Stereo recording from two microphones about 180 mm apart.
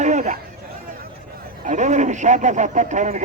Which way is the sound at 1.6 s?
40° right (ahead or behind).